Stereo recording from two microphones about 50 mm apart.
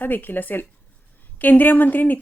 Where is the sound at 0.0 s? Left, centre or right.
Left.